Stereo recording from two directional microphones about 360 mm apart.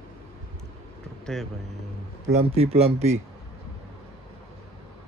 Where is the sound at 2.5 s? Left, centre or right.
Centre.